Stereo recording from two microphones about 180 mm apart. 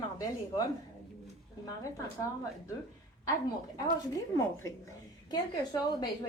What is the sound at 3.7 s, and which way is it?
A woman's voice, 15° left (ahead or behind).